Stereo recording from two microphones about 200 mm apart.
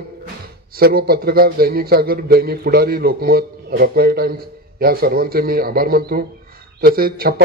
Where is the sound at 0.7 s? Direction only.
50° right (ahead or behind).